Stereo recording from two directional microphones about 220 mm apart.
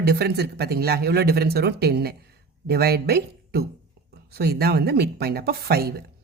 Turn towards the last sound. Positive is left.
turn(degrees=-45)  # may be behind; listen again after turning